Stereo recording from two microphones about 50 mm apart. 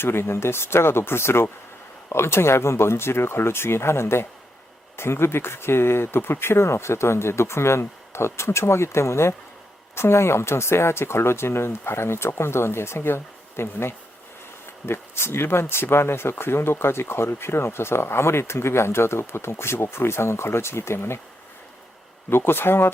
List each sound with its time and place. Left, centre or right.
0.0 s speech: left
22.3 s speech: left